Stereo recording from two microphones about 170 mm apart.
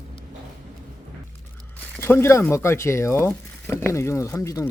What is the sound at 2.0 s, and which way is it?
Speech, 15° left (ahead or behind).